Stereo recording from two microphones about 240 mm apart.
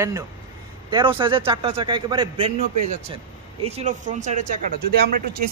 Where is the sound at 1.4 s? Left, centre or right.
Right.